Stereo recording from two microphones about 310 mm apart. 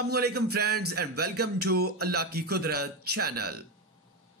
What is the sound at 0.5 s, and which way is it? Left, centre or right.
A man's voice, right.